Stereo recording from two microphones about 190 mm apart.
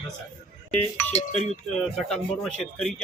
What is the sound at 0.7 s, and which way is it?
Speech, 10° left (ahead or behind).